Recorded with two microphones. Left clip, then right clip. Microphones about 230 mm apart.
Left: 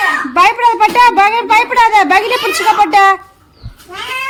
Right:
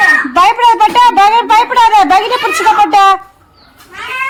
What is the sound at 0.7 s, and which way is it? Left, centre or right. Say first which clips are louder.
A woman's voice: right 2 dB; left.